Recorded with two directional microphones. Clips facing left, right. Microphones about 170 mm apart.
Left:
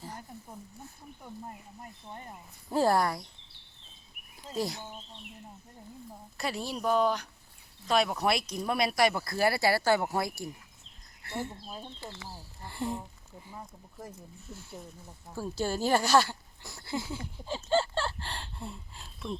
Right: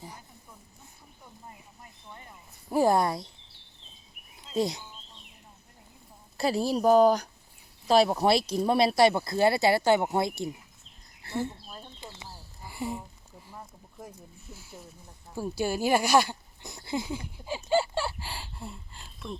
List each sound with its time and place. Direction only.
1.2 s a sound: 50° left (ahead or behind)
2.6 s speech: 15° right (ahead or behind)
4.5 s speech: 20° right (ahead or behind)
6.3 s a woman's voice: 30° right (ahead or behind)
11.3 s speech: 10° left (ahead or behind)
11.9 s speech: 20° right (ahead or behind); by 19.4 s centre (ahead or behind)